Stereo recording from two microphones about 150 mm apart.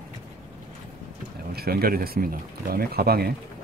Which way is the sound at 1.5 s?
90° right.